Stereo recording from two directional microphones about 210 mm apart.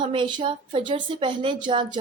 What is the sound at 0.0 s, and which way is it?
Speech, 20° right (ahead or behind).